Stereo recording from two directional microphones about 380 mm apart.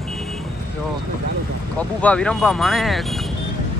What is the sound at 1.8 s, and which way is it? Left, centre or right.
Speech, centre.